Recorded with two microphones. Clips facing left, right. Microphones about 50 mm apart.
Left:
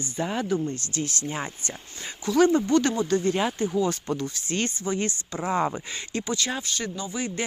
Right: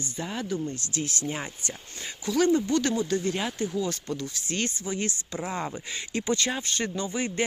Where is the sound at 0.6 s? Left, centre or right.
Centre.